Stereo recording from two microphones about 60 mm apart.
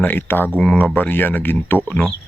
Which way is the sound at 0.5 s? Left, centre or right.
Centre.